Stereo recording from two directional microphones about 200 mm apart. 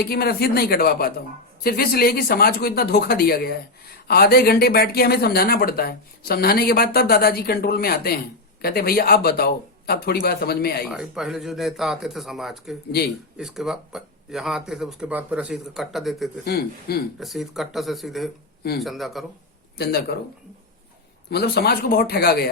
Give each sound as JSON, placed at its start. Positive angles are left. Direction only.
{"t": 0.0, "sound": "speech", "side_deg": 50}
{"t": 10.8, "sound": "speech", "side_deg": -5}
{"t": 16.4, "sound": "speech", "side_deg": 50}
{"t": 17.2, "sound": "speech", "side_deg": 0}
{"t": 19.7, "sound": "speech", "side_deg": 50}
{"t": 21.2, "sound": "speech", "side_deg": 55}